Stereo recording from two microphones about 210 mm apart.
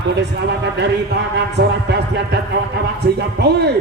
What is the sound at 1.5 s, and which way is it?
Speech, 55° right (ahead or behind).